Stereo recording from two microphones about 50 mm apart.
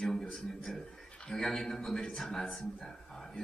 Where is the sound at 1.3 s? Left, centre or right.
Centre.